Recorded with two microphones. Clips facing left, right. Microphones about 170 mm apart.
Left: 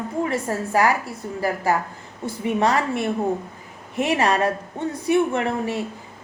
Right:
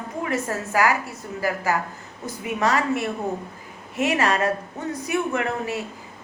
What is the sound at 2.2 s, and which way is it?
Speech, 30° left (ahead or behind).